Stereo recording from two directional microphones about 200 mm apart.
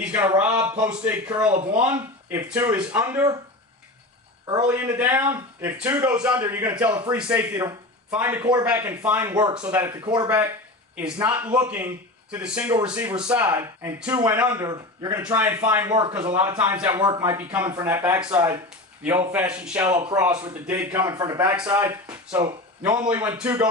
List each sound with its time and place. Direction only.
0.1 s a man's voice: 5° right (ahead or behind)
4.6 s a man's voice: 10° right (ahead or behind)
15.4 s a man's voice: 10° right (ahead or behind)
15.8 s a man's voice: 20° right (ahead or behind)
16.9 s a man's voice: 20° right (ahead or behind)
18.3 s speech: 20° right (ahead or behind)
19.0 s a man's voice: 10° right (ahead or behind)
19.9 s a man's voice: 15° right (ahead or behind)
22.0 s a man's voice: 5° right (ahead or behind)